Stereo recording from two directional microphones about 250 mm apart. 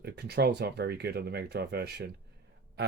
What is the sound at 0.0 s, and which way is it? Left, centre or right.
Speech, right.